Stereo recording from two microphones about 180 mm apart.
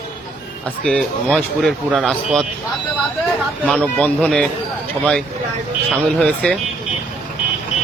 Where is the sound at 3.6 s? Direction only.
5° left (ahead or behind).